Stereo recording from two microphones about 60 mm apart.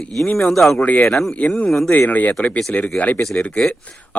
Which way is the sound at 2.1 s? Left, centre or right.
Left.